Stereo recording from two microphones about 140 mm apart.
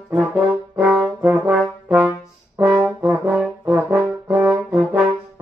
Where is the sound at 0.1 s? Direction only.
15° right (ahead or behind).